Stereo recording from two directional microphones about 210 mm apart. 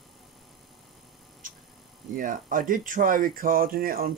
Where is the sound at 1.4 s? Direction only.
40° right (ahead or behind).